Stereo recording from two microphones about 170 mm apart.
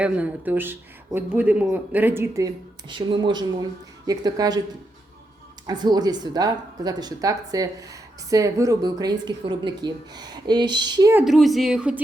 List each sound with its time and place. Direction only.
0.0 s speech: 10° right (ahead or behind)
5.6 s speech: 25° right (ahead or behind)
11.1 s a woman's voice: 10° right (ahead or behind)